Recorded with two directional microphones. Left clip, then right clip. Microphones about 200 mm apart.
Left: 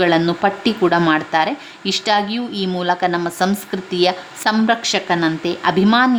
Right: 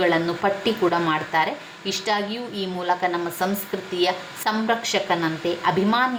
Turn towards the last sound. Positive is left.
turn(degrees=40)  # may be behind; listen again after turning